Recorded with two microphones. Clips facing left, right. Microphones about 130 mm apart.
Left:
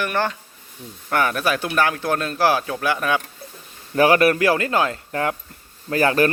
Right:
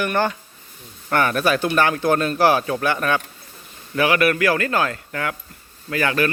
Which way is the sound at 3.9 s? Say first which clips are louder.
Left 3 dB; 35° left (ahead or behind).